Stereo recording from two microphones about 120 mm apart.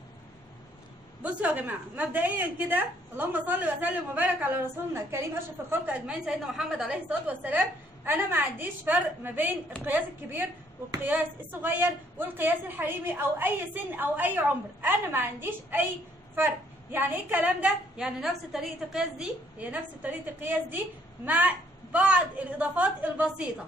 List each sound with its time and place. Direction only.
1.2 s a woman's voice: 15° right (ahead or behind)